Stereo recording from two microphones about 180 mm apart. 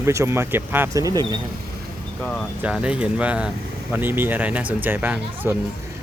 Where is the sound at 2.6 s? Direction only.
5° right (ahead or behind).